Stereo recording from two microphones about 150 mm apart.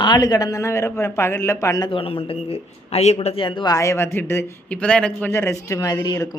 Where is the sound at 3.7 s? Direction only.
20° left (ahead or behind).